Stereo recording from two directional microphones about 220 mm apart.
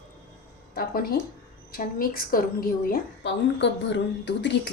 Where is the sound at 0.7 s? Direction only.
40° left (ahead or behind).